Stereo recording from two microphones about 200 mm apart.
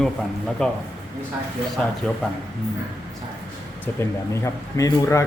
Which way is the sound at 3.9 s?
10° left (ahead or behind).